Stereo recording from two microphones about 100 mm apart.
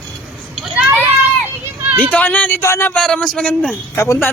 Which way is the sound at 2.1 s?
15° left (ahead or behind).